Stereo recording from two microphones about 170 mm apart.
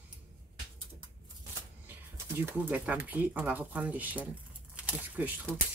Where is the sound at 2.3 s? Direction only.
10° right (ahead or behind).